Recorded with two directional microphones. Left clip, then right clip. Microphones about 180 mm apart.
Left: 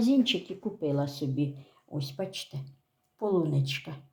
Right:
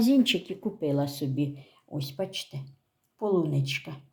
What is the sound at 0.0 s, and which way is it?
Speech, 20° right (ahead or behind).